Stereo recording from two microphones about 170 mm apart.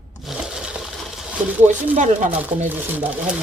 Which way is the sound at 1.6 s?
45° right (ahead or behind).